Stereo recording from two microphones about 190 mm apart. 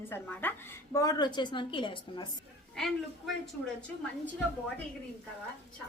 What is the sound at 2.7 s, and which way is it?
Speech, centre (ahead or behind).